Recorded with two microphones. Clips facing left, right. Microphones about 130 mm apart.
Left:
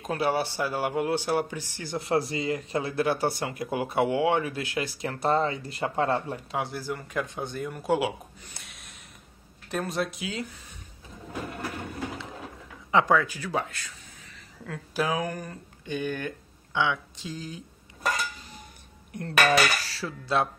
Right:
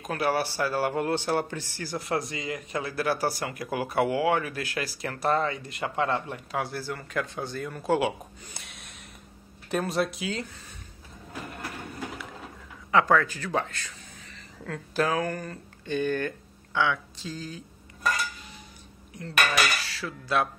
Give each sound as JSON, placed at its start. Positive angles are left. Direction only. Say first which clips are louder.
{"t": 0.1, "sound": "speech", "louder": "even", "side_deg": 25}
{"t": 8.5, "sound": "snort", "louder": "right 2 dB", "side_deg": 0}
{"t": 9.7, "sound": "speech", "louder": "right 2 dB", "side_deg": 0}
{"t": 12.9, "sound": "a man's voice", "louder": "even", "side_deg": 15}
{"t": 19.1, "sound": "cutlery", "louder": "left 4 dB", "side_deg": 55}
{"t": 19.5, "sound": "speech", "louder": "left 4 dB", "side_deg": 30}